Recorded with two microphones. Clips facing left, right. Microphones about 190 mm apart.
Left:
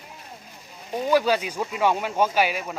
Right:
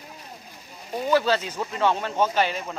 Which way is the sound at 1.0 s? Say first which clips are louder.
Left 1 dB; 10° left (ahead or behind).